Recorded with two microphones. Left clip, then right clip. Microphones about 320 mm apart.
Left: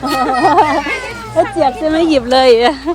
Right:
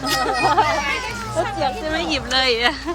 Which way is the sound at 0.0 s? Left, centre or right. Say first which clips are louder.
Left 6 dB; left.